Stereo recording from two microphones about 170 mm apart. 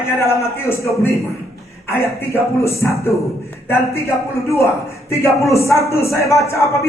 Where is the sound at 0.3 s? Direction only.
15° left (ahead or behind).